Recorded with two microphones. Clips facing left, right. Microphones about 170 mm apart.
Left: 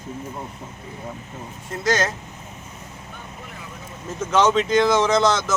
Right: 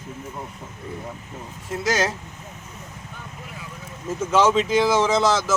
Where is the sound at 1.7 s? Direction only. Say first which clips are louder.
Left 1 dB; 5° right (ahead or behind).